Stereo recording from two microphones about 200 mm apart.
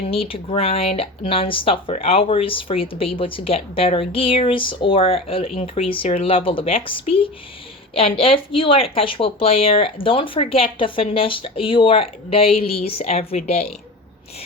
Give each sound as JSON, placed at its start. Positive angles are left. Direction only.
{"t": 0.1, "sound": "speech", "side_deg": 30}